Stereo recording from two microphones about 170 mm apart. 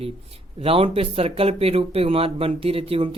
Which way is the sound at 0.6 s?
35° right (ahead or behind).